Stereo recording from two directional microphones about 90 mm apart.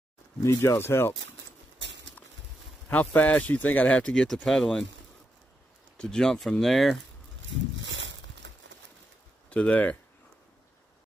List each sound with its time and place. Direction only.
0.4 s speech: 30° left (ahead or behind)
2.9 s speech: 15° left (ahead or behind)
5.9 s speech: 10° left (ahead or behind)
9.5 s speech: 15° left (ahead or behind)